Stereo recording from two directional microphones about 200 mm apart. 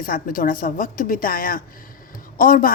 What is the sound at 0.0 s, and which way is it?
A woman's voice, 45° left (ahead or behind).